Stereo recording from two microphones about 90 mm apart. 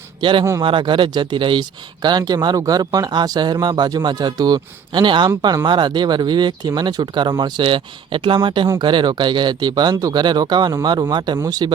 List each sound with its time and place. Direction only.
0.2 s speech: 65° right (ahead or behind)
7.6 s speech: 70° right (ahead or behind); by 11.7 s 45° right (ahead or behind)